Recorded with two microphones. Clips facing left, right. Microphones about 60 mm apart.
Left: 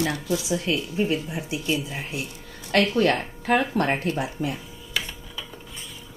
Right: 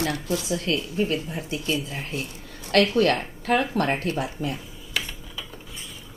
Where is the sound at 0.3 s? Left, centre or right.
Centre.